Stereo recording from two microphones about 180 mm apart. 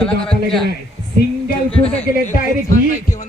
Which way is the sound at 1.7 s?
30° left (ahead or behind).